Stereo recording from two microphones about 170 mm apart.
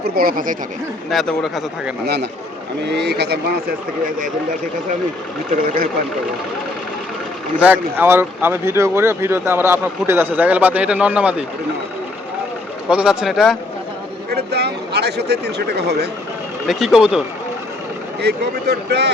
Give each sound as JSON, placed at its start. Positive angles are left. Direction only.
{"t": 0.0, "sound": "speech", "side_deg": -60}
{"t": 1.1, "sound": "speech", "side_deg": 0}
{"t": 2.8, "sound": "speech", "side_deg": -80}
{"t": 5.6, "sound": "speech", "side_deg": -60}
{"t": 7.6, "sound": "speech", "side_deg": -10}
{"t": 12.9, "sound": "speech", "side_deg": -5}
{"t": 14.3, "sound": "speech", "side_deg": -75}
{"t": 16.6, "sound": "speech", "side_deg": -5}
{"t": 18.2, "sound": "speech", "side_deg": -75}